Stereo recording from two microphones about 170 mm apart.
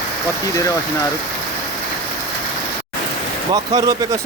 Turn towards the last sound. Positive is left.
turn(degrees=-20)  # may be behind; listen again after turning